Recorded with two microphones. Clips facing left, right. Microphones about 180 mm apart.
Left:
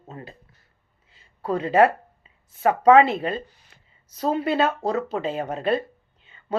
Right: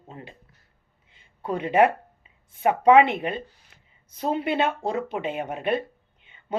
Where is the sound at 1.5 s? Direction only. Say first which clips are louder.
Left 2 dB; 15° right (ahead or behind).